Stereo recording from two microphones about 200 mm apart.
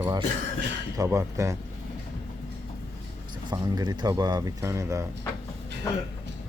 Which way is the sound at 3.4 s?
20° right (ahead or behind).